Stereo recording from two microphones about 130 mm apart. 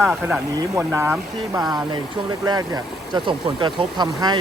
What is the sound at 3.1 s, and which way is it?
Speech, 35° right (ahead or behind).